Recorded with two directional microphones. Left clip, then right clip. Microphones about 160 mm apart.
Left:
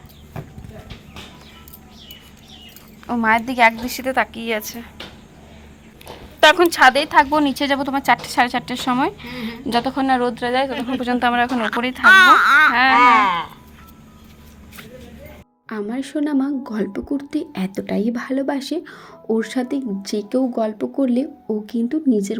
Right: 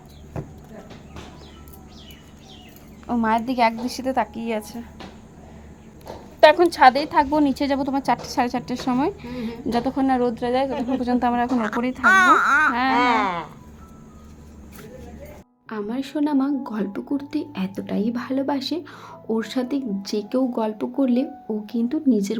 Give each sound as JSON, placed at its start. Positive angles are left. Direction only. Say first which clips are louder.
{"t": 3.1, "sound": "speech", "louder": "left 4 dB", "side_deg": 25}
{"t": 6.4, "sound": "speech", "louder": "left 1 dB", "side_deg": 0}
{"t": 12.7, "sound": "a woman's voice", "louder": "left 7 dB", "side_deg": 10}
{"t": 13.0, "sound": "speech", "louder": "left 7 dB", "side_deg": -30}
{"t": 15.7, "sound": "a woman's voice", "louder": "left 2 dB", "side_deg": 15}